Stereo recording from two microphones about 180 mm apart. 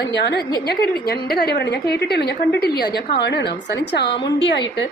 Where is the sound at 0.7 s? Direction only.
60° left (ahead or behind).